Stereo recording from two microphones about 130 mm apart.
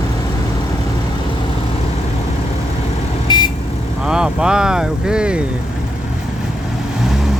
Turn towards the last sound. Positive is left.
turn(degrees=-5)  # may be behind; listen again after turning